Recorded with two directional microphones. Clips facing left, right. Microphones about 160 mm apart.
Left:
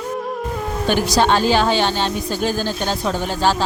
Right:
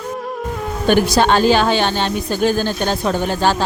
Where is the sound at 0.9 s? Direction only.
55° right (ahead or behind).